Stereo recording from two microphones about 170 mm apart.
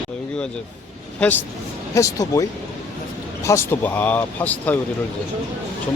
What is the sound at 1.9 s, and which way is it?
Speech, 20° left (ahead or behind).